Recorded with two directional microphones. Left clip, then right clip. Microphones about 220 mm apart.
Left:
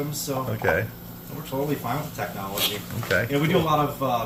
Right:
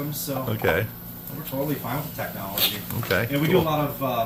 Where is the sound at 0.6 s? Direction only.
35° right (ahead or behind).